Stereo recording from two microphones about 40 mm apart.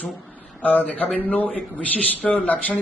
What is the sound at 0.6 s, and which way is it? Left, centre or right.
Speech, left.